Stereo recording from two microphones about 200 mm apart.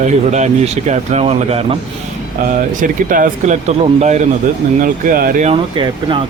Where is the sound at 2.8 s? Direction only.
40° right (ahead or behind).